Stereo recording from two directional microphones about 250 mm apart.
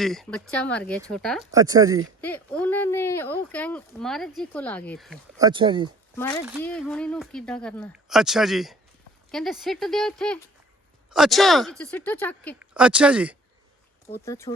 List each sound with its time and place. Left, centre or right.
0.0 s speech: centre
1.5 s speech: centre
2.2 s speech: centre
5.4 s speech: centre
6.6 s speech: centre
12.5 s speech: centre
14.1 s speech: centre